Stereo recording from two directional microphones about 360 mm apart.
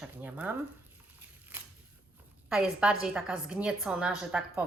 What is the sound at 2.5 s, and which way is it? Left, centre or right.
A woman's voice, centre.